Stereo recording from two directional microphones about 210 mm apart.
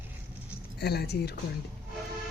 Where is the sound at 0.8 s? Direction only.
50° left (ahead or behind).